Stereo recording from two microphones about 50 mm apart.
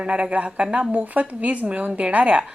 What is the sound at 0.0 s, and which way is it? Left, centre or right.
Speech, right.